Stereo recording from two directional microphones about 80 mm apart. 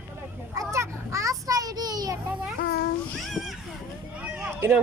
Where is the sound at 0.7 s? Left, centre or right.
Right.